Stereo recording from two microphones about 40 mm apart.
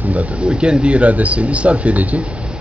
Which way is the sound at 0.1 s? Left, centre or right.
Right.